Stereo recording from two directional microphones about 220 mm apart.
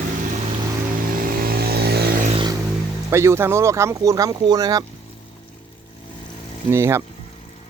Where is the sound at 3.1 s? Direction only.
10° right (ahead or behind).